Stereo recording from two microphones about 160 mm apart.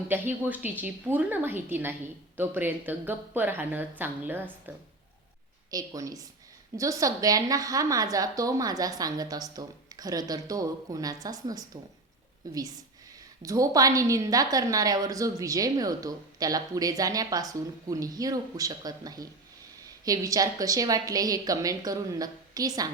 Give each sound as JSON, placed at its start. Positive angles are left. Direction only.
{"t": 0.1, "sound": "a woman's voice", "side_deg": -10}